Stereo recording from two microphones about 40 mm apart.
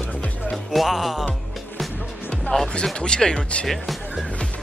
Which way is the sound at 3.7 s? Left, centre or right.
Centre.